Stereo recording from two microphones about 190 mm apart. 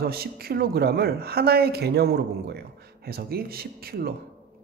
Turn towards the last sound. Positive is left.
turn(degrees=-55)  # may be behind; listen again after turning